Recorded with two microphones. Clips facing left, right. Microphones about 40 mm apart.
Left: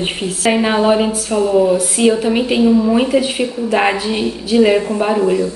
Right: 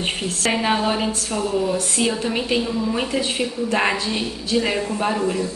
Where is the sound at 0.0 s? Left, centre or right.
Centre.